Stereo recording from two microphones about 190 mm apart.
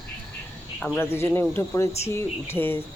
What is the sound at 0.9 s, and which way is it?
Speech, 10° left (ahead or behind).